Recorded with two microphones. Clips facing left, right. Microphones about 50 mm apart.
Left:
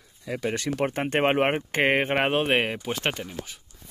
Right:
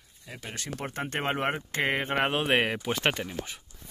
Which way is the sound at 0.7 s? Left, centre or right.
Left.